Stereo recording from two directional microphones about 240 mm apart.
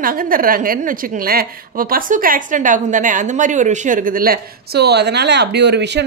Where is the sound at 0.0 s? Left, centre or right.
Right.